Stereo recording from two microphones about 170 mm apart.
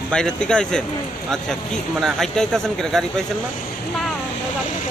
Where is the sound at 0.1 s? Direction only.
5° left (ahead or behind).